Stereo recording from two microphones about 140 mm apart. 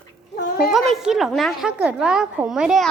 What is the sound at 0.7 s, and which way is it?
A woman's voice, centre (ahead or behind).